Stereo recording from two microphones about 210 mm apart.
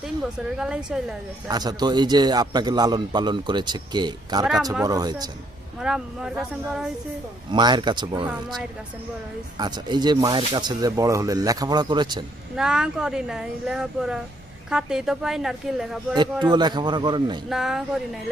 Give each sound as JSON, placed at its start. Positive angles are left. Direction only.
{"t": 0.3, "sound": "a woman's voice", "side_deg": -5}
{"t": 1.5, "sound": "a man's voice", "side_deg": -20}
{"t": 5.8, "sound": "a woman's voice", "side_deg": -5}
{"t": 7.5, "sound": "a man's voice", "side_deg": -20}
{"t": 9.6, "sound": "a man's voice", "side_deg": -20}
{"t": 12.5, "sound": "a woman's voice", "side_deg": -5}
{"t": 16.4, "sound": "a man's voice", "side_deg": -20}
{"t": 17.5, "sound": "a woman's voice", "side_deg": 0}